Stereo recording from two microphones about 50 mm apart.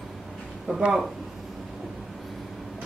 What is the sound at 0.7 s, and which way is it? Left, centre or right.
Speech, right.